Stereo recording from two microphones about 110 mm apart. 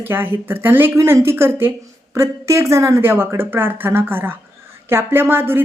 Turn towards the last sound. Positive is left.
turn(degrees=-20)  # may be behind; listen again after turning